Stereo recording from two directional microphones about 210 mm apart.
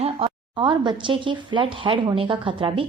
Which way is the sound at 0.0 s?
25° right (ahead or behind).